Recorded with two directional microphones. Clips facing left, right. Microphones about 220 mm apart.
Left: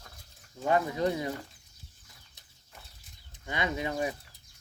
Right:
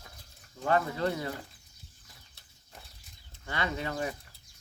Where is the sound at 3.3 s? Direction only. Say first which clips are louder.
Left 1 dB; 15° left (ahead or behind).